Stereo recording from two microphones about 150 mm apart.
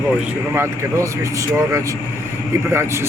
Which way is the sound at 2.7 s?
15° right (ahead or behind).